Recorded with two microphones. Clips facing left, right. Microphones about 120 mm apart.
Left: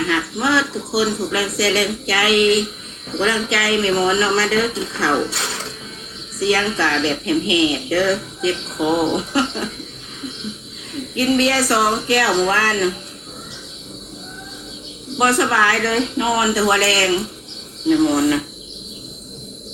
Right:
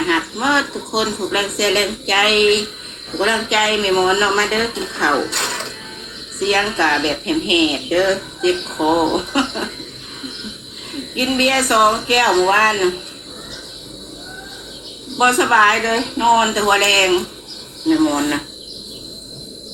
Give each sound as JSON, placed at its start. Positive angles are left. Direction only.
{"t": 0.1, "sound": "speech", "side_deg": -55}
{"t": 5.3, "sound": "a sound", "side_deg": -60}
{"t": 6.4, "sound": "speech", "side_deg": -60}
{"t": 11.3, "sound": "speech", "side_deg": -60}
{"t": 15.2, "sound": "speech", "side_deg": -60}